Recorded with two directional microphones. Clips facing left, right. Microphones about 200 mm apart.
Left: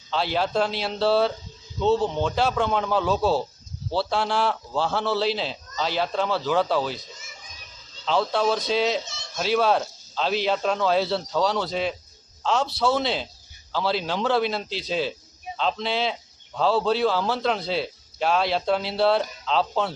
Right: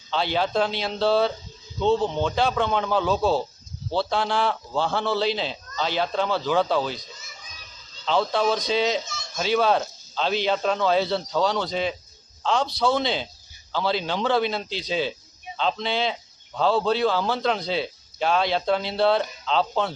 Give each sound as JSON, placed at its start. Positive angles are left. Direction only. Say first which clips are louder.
{"t": 0.1, "sound": "a man's voice", "louder": "even", "side_deg": 0}
{"t": 8.0, "sound": "a man's voice", "louder": "even", "side_deg": 0}